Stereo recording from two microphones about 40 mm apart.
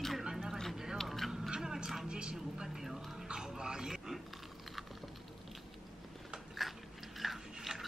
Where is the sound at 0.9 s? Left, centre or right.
Centre.